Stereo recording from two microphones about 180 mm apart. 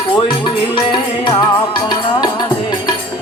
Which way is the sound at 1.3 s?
25° left (ahead or behind).